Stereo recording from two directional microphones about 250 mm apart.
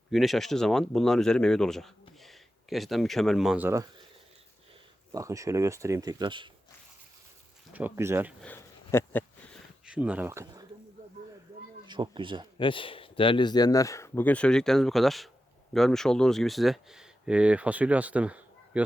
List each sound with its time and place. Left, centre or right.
0.1 s speech: centre
5.1 s speech: centre
7.7 s speech: centre
8.4 s a sound: centre
9.8 s speech: centre
11.9 s speech: centre
12.5 s speech: centre